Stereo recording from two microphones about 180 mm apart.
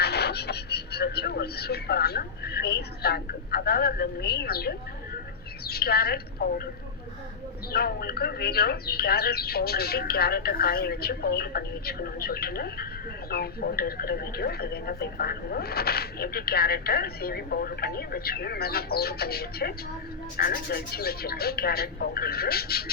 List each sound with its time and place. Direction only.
0.0 s a woman's voice: 65° left (ahead or behind)
7.7 s speech: 60° left (ahead or behind)